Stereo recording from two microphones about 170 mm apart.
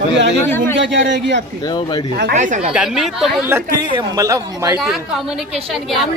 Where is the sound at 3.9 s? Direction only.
20° right (ahead or behind).